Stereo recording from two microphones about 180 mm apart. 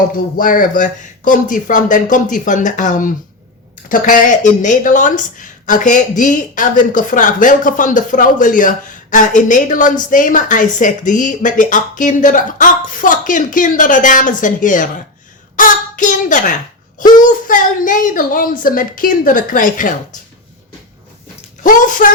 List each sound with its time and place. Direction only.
0.3 s a woman's voice: 50° left (ahead or behind)
21.6 s a woman's voice: 45° left (ahead or behind)